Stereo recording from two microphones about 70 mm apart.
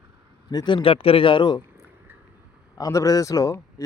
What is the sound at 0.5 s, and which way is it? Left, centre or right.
Speech, left.